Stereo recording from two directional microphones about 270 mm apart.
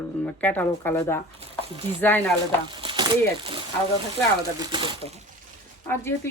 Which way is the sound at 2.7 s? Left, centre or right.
Centre.